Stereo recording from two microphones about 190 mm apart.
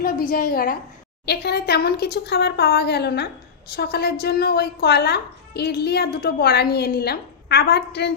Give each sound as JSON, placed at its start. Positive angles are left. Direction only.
{"t": 0.0, "sound": "a woman's voice", "side_deg": 50}